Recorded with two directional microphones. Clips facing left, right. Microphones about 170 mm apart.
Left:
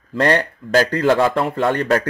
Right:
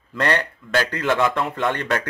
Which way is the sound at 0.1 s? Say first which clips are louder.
Left 5 dB; 35° left (ahead or behind).